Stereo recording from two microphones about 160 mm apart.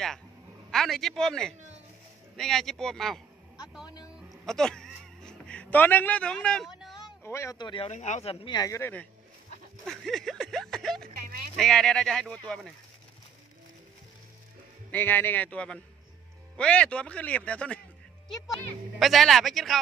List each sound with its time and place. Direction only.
0.7 s speech: centre (ahead or behind)
3.8 s speech: 25° left (ahead or behind)
4.3 s a sound: 5° left (ahead or behind)
7.2 s speech: 15° left (ahead or behind)
7.5 s speech: 30° left (ahead or behind)
7.9 s speech: 45° left (ahead or behind); by 9.0 s 15° left (ahead or behind)
9.8 s speech: centre (ahead or behind)
14.9 s speech: 10° left (ahead or behind)